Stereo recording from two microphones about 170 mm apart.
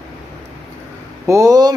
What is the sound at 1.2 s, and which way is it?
Speech, 20° right (ahead or behind).